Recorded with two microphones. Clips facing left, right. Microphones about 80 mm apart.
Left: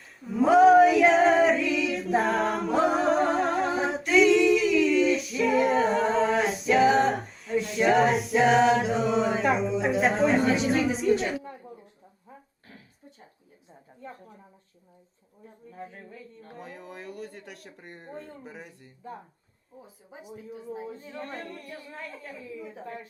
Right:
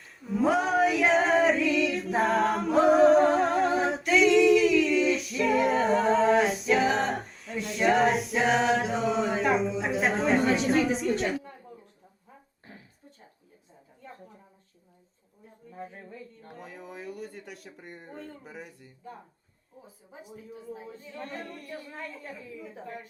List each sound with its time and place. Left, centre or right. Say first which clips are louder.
0.2 s female singing: left 7 dB; centre
15.7 s speech: right 1 dB; centre
20.7 s speech: left 5 dB; left
21.8 s speech: even; centre